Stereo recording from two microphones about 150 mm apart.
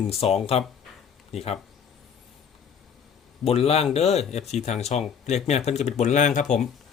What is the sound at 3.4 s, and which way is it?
Speech, 40° left (ahead or behind).